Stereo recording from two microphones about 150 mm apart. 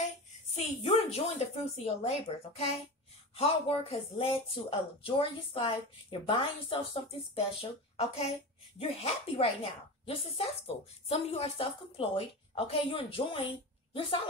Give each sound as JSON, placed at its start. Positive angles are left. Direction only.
{"t": 0.6, "sound": "a woman's voice", "side_deg": 45}